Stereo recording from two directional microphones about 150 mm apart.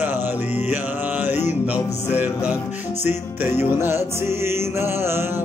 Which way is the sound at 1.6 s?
10° right (ahead or behind).